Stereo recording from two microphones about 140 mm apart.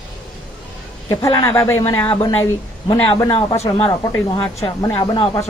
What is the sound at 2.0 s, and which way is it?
A woman's voice, 30° left (ahead or behind).